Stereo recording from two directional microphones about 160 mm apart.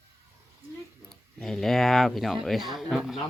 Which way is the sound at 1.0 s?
Centre (ahead or behind).